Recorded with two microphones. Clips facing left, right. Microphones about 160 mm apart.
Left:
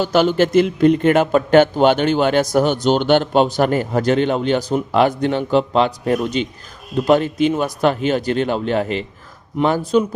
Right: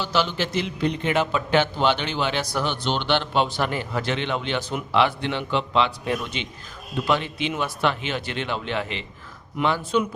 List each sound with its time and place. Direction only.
0.0 s a man's voice: 50° left (ahead or behind)